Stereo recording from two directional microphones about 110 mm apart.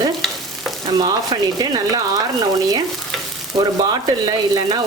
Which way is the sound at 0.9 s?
35° right (ahead or behind).